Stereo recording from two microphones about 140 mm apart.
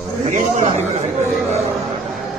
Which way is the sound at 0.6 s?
45° right (ahead or behind).